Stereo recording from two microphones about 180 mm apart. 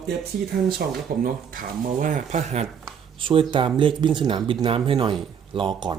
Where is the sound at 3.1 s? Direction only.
30° right (ahead or behind).